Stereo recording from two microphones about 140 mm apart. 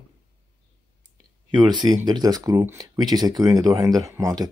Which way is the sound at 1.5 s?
30° right (ahead or behind).